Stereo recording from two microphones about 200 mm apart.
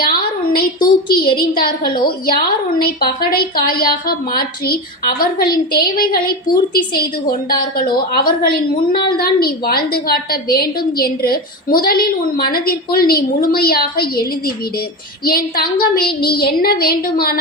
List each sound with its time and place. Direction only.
0.0 s a sound: 50° left (ahead or behind)
1.1 s a woman's voice: 50° left (ahead or behind)
8.7 s a woman's voice: 25° left (ahead or behind)
9.0 s a woman's voice: 50° left (ahead or behind)